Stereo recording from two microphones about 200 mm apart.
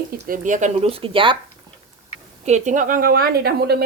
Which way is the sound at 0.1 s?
40° right (ahead or behind).